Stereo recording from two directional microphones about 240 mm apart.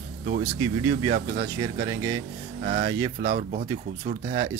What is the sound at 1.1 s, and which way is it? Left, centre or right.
Speech, right.